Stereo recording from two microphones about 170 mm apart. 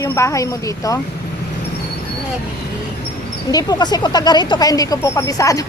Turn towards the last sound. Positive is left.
turn(degrees=20)  # may be behind; listen again after turning